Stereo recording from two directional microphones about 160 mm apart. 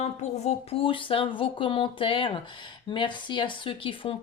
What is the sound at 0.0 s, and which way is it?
Speech, 40° left (ahead or behind).